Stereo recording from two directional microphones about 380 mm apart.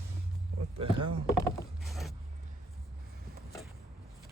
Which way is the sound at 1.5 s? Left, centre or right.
Centre.